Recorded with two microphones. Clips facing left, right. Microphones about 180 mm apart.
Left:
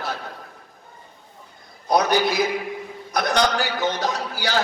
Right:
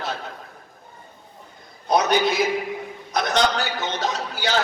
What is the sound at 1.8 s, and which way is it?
A man's voice, 20° right (ahead or behind).